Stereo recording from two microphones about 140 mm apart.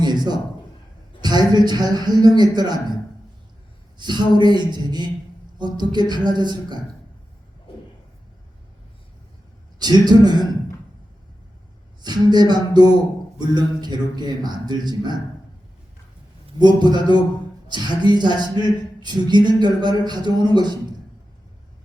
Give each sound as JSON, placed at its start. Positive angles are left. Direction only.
{"t": 0.0, "sound": "a sound", "side_deg": -30}
{"t": 1.2, "sound": "speech", "side_deg": -30}
{"t": 3.9, "sound": "speech", "side_deg": -30}
{"t": 9.7, "sound": "speech", "side_deg": -30}
{"t": 12.0, "sound": "speech", "side_deg": -30}
{"t": 16.6, "sound": "speech", "side_deg": -30}